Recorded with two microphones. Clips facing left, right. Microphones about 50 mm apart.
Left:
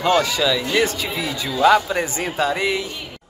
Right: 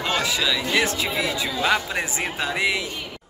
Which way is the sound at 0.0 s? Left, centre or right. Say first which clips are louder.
Left 6 dB; centre.